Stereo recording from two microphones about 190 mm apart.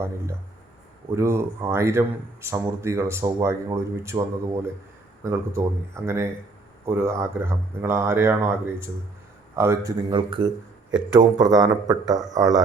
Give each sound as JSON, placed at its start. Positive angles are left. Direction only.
{"t": 1.1, "sound": "speech", "side_deg": -15}
{"t": 5.2, "sound": "speech", "side_deg": -15}
{"t": 10.1, "sound": "speech", "side_deg": -25}